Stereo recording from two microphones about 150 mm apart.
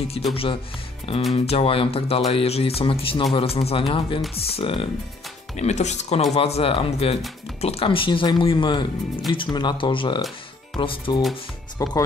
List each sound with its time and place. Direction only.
0.3 s speech: 40° left (ahead or behind); by 11.9 s 25° left (ahead or behind)